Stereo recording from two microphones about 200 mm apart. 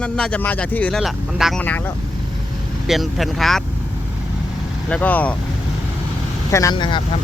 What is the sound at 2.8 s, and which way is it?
Speech, centre (ahead or behind).